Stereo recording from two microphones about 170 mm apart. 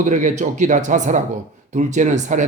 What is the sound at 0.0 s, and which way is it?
Speech, 45° right (ahead or behind).